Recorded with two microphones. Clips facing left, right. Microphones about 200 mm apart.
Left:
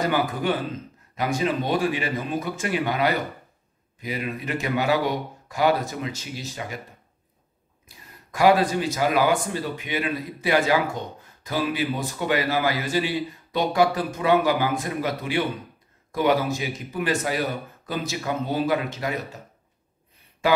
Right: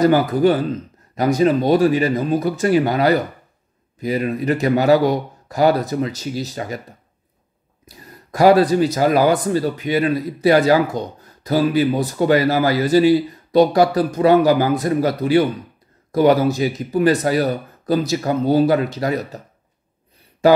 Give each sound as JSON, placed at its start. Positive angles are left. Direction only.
{"t": 0.0, "sound": "speech", "side_deg": -40}
{"t": 7.8, "sound": "speech", "side_deg": -35}
{"t": 20.4, "sound": "speech", "side_deg": -40}